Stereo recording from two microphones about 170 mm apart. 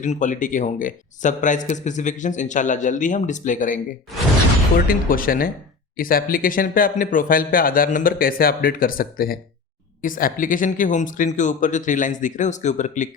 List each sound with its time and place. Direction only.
0.0 s speech: 45° left (ahead or behind)
4.9 s speech: 55° left (ahead or behind)